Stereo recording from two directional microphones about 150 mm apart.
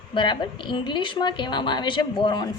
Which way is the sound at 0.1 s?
30° left (ahead or behind).